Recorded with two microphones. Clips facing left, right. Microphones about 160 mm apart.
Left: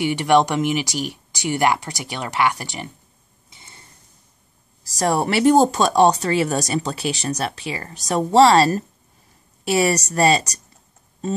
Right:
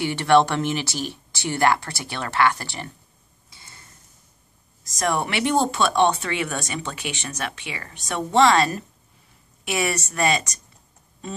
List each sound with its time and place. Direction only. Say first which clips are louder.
0.0 s speech: left 1 dB; 15° left (ahead or behind)
3.4 s a sound: left 2 dB; 20° left (ahead or behind)
4.8 s speech: left 4 dB; 35° left (ahead or behind)